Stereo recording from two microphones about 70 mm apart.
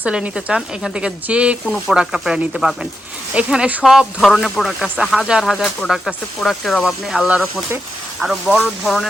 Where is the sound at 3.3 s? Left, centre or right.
Centre.